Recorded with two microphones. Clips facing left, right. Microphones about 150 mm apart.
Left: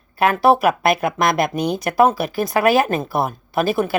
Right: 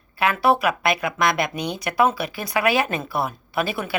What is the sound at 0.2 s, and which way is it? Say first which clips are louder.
Speech: left 5 dB; 45° left (ahead or behind).